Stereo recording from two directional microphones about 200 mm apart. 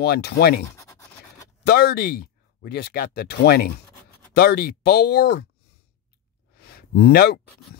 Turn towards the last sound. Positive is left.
turn(degrees=50)  # may be behind; listen again after turning